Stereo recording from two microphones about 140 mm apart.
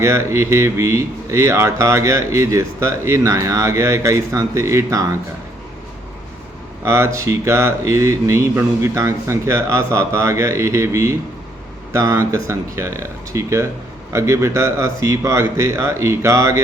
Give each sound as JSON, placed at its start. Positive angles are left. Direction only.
{"t": 0.0, "sound": "speech", "side_deg": -20}
{"t": 6.8, "sound": "speech", "side_deg": -20}